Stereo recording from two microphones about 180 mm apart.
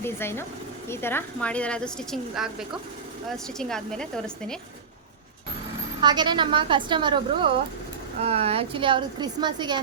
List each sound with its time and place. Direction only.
0.0 s a woman's voice: 15° left (ahead or behind)
6.0 s a woman's voice: 25° right (ahead or behind)